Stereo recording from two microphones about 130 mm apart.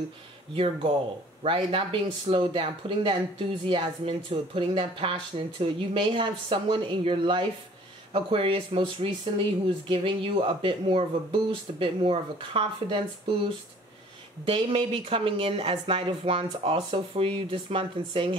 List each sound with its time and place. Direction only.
1.4 s speech: 45° right (ahead or behind)
14.4 s speech: 45° right (ahead or behind)